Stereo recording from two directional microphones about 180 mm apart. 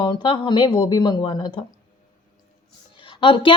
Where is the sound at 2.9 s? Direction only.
30° left (ahead or behind).